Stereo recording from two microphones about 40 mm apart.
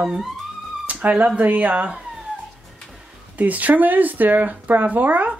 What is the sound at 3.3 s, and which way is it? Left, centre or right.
Speech, right.